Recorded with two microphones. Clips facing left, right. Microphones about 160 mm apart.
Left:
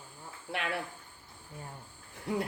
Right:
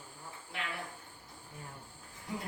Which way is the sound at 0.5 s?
70° left (ahead or behind).